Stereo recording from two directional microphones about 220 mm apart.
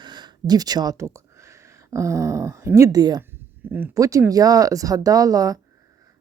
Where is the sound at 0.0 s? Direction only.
20° right (ahead or behind).